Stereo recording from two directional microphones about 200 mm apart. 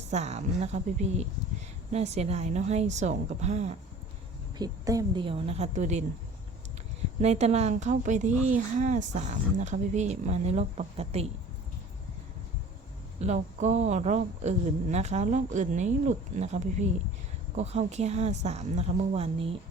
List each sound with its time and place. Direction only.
0.1 s speech: 35° right (ahead or behind)
4.5 s a woman's voice: 20° right (ahead or behind); by 6.1 s 35° right (ahead or behind)
7.2 s speech: 35° right (ahead or behind)
13.1 s speech: 35° right (ahead or behind)